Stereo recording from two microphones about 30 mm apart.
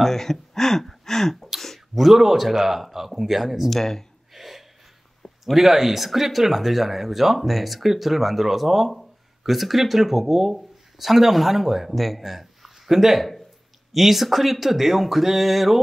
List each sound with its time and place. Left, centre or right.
0.0 s speech: centre
1.5 s a sound: centre
2.0 s speech: centre
3.7 s speech: centre
4.3 s gasp: centre
5.4 s speech: centre
11.9 s speech: centre